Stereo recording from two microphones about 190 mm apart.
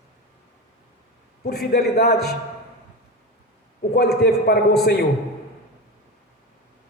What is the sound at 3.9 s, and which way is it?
Speech, 55° left (ahead or behind).